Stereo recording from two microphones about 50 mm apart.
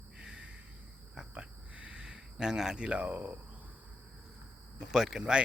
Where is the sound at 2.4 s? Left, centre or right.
Centre; by 3.3 s right.